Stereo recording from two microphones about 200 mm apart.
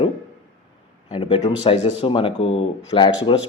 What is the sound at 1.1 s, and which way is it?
Speech, 20° left (ahead or behind).